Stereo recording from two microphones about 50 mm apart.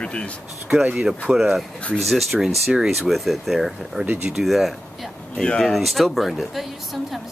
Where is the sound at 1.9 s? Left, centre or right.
Centre.